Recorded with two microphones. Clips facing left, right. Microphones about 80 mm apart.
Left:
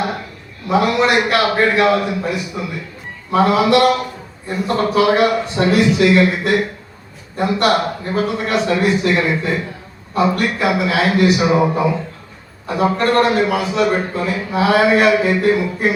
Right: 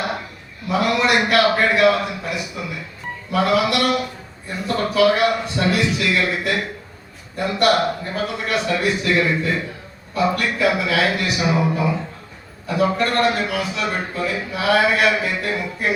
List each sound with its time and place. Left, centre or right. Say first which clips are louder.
0.7 s a man's voice: left 4 dB; left